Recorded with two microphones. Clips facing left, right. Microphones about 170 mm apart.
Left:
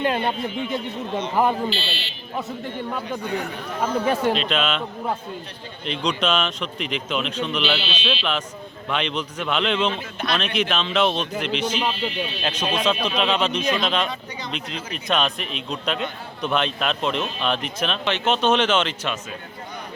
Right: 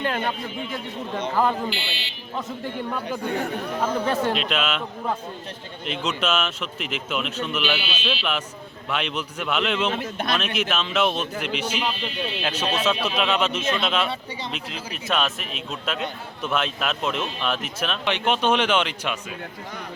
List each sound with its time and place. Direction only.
0.0 s a man's voice: 20° left (ahead or behind)
1.7 s speech: 15° right (ahead or behind)
3.2 s speech: 50° right (ahead or behind)
3.8 s speech: 10° left (ahead or behind)
4.4 s speech: 5° right (ahead or behind)
5.8 s a man's voice: 5° right (ahead or behind)
9.9 s speech: 50° right (ahead or behind)
10.3 s a man's voice: 5° right (ahead or behind)